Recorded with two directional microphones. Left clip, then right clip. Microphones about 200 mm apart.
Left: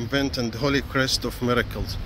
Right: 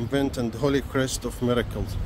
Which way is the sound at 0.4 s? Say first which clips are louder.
Left 1 dB; 20° right (ahead or behind).